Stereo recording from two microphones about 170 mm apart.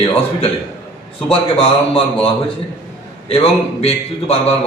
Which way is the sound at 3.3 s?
35° left (ahead or behind).